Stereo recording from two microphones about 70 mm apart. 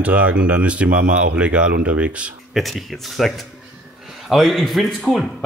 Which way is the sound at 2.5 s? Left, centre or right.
Centre.